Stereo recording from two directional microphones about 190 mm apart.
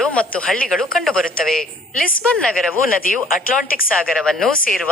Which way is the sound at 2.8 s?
50° left (ahead or behind).